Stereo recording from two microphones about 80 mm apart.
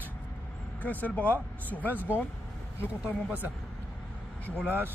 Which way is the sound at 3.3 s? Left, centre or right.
Right.